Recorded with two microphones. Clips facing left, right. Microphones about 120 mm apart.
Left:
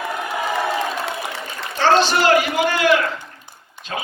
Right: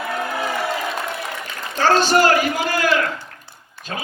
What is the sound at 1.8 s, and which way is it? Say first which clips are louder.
A man's voice: even; 40° right (ahead or behind).